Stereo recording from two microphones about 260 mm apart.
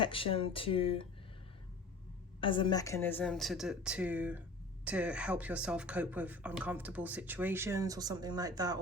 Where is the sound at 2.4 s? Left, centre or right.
Centre.